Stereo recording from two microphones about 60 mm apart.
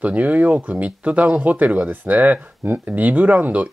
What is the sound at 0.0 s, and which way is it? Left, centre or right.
Speech, right.